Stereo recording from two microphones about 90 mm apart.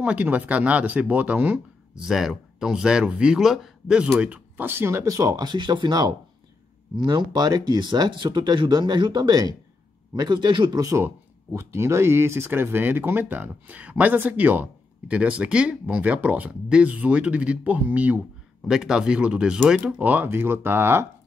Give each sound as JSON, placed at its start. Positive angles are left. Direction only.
{"t": 0.0, "sound": "speech", "side_deg": -15}
{"t": 10.8, "sound": "speech", "side_deg": -35}
{"t": 18.7, "sound": "speech", "side_deg": -5}